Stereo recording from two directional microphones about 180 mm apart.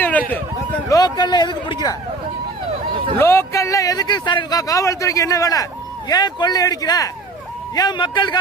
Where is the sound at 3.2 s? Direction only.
15° left (ahead or behind).